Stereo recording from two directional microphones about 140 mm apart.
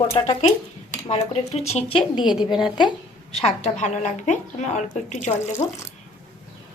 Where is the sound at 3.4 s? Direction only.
55° left (ahead or behind).